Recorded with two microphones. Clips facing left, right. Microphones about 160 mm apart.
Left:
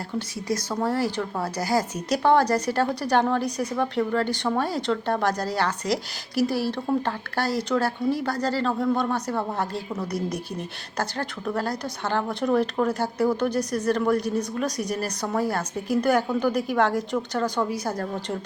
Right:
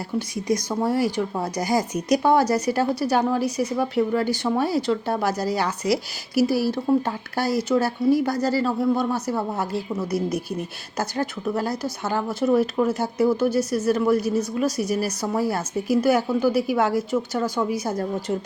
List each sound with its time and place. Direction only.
0.2 s speech: 15° right (ahead or behind)